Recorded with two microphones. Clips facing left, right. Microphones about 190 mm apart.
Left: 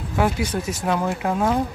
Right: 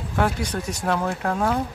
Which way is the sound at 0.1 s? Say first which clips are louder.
Left 2 dB; 5° left (ahead or behind).